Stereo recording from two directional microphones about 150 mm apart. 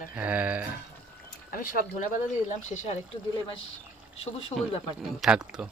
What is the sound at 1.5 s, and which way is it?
Speech, 70° left (ahead or behind).